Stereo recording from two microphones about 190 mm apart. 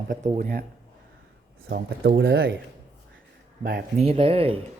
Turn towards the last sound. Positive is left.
turn(degrees=-30)  # may be behind; listen again after turning